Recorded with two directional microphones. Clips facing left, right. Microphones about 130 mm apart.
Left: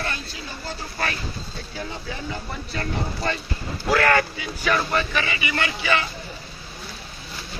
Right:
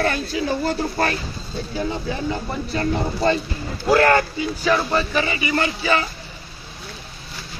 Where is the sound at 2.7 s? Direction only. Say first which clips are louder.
Right 6 dB; 30° right (ahead or behind).